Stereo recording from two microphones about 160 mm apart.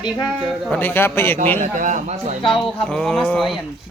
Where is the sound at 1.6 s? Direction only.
50° right (ahead or behind).